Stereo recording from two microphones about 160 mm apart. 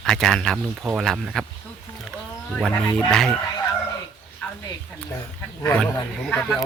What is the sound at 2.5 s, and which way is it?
Speech, 5° left (ahead or behind).